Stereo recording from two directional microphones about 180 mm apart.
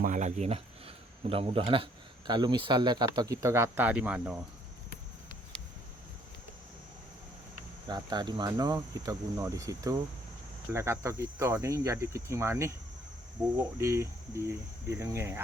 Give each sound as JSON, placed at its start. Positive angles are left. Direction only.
{"t": 0.0, "sound": "speech", "side_deg": -45}
{"t": 7.9, "sound": "speech", "side_deg": -25}
{"t": 10.7, "sound": "cricket", "side_deg": -15}
{"t": 13.7, "sound": "cricket", "side_deg": -15}